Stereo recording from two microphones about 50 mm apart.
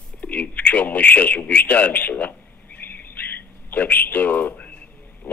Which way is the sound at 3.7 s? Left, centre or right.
Left.